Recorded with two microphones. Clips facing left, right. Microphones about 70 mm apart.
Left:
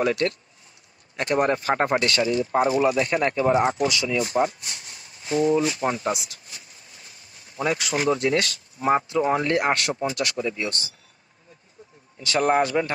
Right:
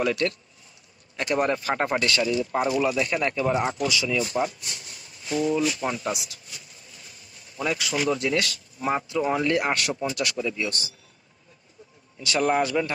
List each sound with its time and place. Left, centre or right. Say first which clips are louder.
0.0 s speech: left 2 dB; left
12.2 s speech: left 2 dB; left